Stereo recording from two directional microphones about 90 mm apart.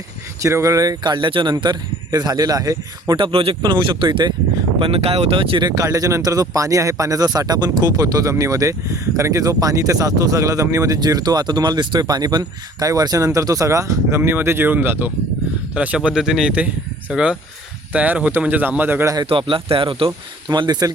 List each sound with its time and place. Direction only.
0.4 s speech: 35° right (ahead or behind); by 1.5 s 65° right (ahead or behind)
1.6 s speech: 45° right (ahead or behind)
3.2 s speech: 80° right
3.6 s speech: 60° right (ahead or behind)
4.8 s speech: 85° right
5.6 s speech: 40° right (ahead or behind)
14.2 s a man's voice: 25° right (ahead or behind)
19.2 s speech: 70° right (ahead or behind); by 20.9 s 50° right (ahead or behind)